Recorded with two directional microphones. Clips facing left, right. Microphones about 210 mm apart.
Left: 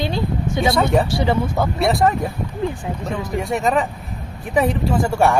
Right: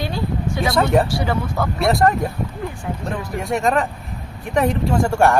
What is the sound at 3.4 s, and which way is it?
Speech, centre (ahead or behind).